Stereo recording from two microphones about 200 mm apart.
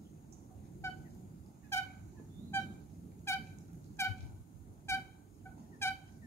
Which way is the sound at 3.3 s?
15° left (ahead or behind).